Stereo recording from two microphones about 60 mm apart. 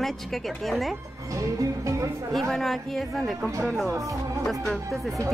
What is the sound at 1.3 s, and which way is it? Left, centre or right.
Music, right.